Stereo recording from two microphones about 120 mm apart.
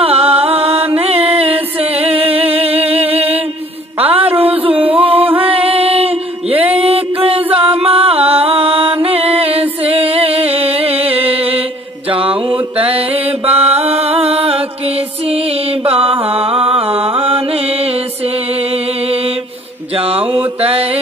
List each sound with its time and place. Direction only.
0.0 s music: 55° right (ahead or behind)
4.0 s a sound: 55° right (ahead or behind)
4.4 s music: 50° right (ahead or behind)
12.1 s mantra: 50° right (ahead or behind)
15.8 s mantra: 50° right (ahead or behind)
20.0 s mantra: 50° right (ahead or behind)